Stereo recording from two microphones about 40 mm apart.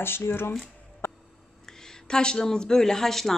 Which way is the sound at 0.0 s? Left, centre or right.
Left.